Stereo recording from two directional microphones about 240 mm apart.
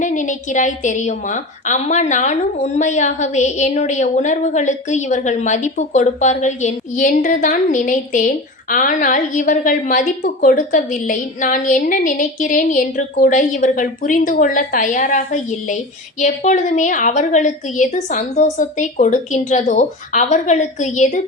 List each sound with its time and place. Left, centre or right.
0.0 s a woman's voice: left